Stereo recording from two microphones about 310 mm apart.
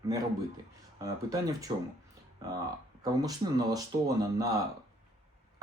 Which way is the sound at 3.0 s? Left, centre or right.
Centre.